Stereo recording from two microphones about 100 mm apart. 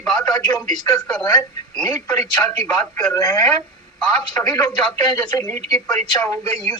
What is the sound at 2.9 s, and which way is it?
Speech, 40° left (ahead or behind).